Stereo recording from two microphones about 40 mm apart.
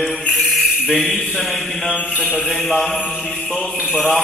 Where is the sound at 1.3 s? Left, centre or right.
Centre.